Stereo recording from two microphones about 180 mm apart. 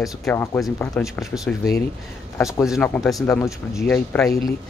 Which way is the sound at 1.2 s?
Centre (ahead or behind).